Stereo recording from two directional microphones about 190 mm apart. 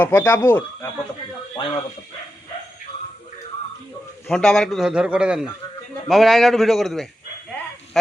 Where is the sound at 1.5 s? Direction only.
25° left (ahead or behind).